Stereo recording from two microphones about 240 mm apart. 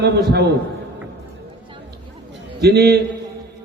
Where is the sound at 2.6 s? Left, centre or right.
Right.